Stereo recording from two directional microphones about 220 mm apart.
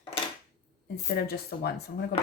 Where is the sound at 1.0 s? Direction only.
45° left (ahead or behind).